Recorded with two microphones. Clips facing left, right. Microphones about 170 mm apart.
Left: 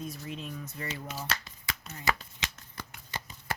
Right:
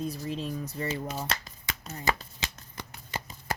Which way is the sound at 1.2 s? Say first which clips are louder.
Right 2 dB; 35° right (ahead or behind).